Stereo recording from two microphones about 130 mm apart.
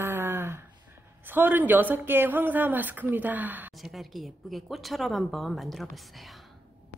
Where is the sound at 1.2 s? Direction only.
15° right (ahead or behind).